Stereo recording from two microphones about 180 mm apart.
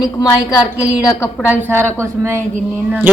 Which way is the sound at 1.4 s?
10° right (ahead or behind).